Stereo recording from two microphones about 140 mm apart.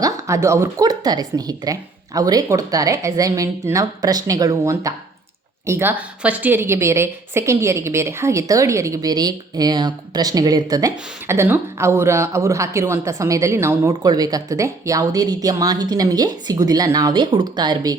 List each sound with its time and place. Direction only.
0.0 s a woman's voice: 20° right (ahead or behind)